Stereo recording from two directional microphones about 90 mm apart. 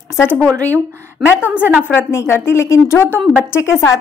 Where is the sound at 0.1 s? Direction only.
25° left (ahead or behind).